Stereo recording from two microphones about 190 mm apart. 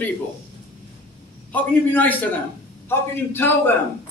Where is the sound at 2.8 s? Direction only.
10° left (ahead or behind).